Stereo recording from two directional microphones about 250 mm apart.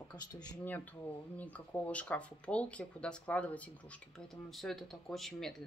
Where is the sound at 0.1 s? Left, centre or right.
Centre.